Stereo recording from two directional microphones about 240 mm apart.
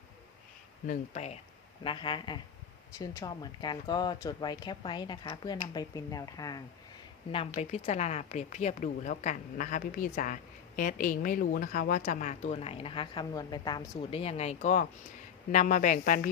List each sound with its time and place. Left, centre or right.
0.9 s speech: left